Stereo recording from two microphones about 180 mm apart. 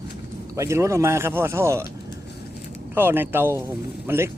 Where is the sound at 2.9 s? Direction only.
10° right (ahead or behind).